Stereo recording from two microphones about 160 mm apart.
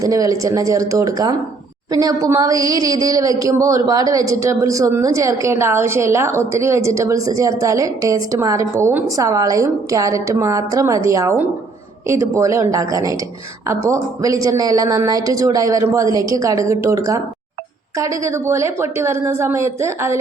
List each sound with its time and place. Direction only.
0.0 s a woman's voice: 20° right (ahead or behind)